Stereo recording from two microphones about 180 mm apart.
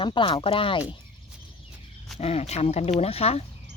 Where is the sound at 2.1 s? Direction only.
35° left (ahead or behind).